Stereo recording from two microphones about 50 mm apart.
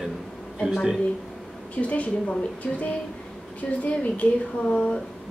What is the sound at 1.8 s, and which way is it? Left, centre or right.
Speech, left.